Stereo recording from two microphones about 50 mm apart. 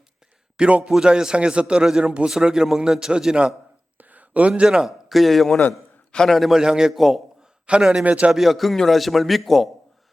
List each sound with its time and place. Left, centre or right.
0.5 s a man's voice: centre
3.9 s a sound: right
4.6 s a man's voice: centre
5.0 s a man's voice: centre
6.6 s a man's voice: centre
8.0 s speech: right
8.3 s a man's voice: centre